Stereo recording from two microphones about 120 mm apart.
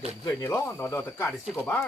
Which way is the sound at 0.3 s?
25° left (ahead or behind).